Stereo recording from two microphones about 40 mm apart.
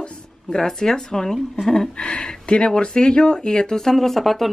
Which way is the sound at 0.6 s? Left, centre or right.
Centre.